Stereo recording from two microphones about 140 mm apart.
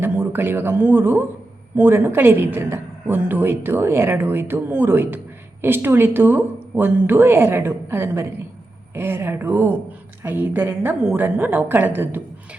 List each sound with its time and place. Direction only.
0.0 s a woman's voice: 15° right (ahead or behind)